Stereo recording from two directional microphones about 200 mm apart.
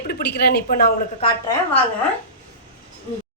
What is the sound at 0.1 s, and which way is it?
Speech, 55° left (ahead or behind).